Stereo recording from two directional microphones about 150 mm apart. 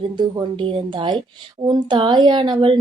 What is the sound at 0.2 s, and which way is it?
Speech, 30° right (ahead or behind).